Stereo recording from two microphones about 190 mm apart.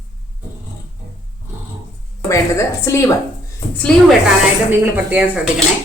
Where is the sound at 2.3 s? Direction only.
15° left (ahead or behind).